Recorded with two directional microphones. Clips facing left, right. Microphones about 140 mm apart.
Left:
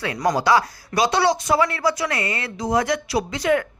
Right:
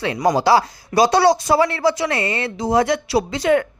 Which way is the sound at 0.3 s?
30° right (ahead or behind).